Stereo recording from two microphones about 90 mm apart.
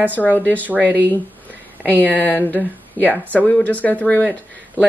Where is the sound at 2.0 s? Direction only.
20° left (ahead or behind).